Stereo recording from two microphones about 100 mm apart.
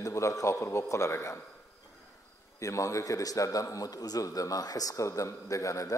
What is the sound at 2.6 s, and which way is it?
A man's voice, 30° left (ahead or behind).